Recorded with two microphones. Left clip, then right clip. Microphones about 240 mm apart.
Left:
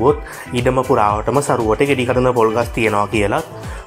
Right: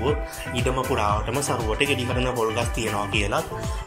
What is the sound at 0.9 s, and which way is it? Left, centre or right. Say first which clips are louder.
Speech: left 9 dB; left.